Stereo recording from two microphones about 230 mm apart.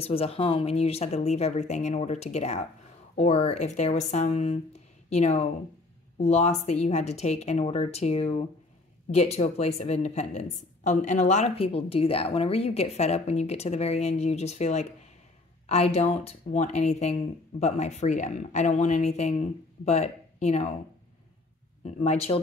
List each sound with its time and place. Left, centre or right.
0.0 s speech: left
21.8 s speech: left